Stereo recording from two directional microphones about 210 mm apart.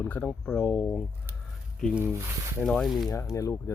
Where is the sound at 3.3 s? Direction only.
15° left (ahead or behind).